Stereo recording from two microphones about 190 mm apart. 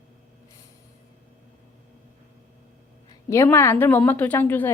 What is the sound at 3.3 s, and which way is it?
Speech, 15° left (ahead or behind).